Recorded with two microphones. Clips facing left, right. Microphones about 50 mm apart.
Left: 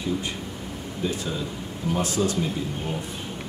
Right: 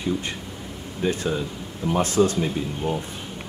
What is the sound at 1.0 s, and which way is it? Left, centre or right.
Speech, right.